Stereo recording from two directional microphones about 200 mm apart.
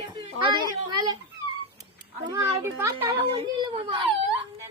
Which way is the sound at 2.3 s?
15° right (ahead or behind).